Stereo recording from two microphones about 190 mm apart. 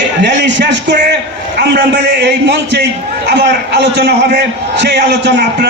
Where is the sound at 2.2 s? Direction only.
65° right (ahead or behind).